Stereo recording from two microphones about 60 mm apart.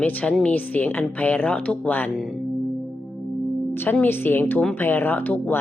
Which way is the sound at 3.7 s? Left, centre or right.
Left.